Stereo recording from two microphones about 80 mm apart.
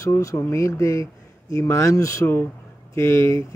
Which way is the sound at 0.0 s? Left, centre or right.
Left.